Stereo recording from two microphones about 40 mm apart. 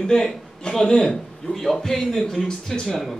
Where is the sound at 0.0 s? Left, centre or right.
Centre.